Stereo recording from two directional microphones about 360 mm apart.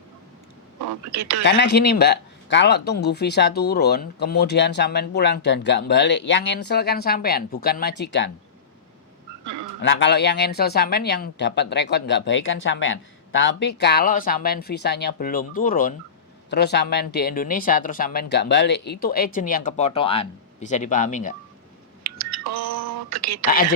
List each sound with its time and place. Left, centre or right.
1.1 s speech: right
1.5 s speech: left
9.8 s speech: left
22.0 s a sound: right
23.0 s speech: right